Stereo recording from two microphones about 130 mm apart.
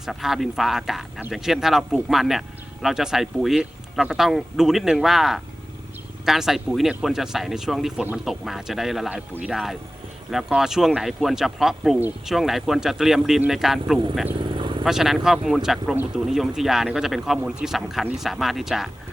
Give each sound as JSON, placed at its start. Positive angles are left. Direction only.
{"t": 0.0, "sound": "speech", "side_deg": 0}
{"t": 14.3, "sound": "vehicle", "side_deg": -40}
{"t": 14.8, "sound": "speech", "side_deg": -5}